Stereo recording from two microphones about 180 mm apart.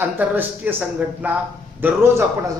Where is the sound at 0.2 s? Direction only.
10° right (ahead or behind).